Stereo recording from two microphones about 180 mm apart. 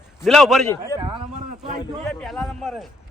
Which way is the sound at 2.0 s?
5° left (ahead or behind).